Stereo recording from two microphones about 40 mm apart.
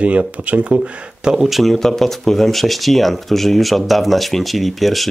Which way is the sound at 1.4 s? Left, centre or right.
Centre.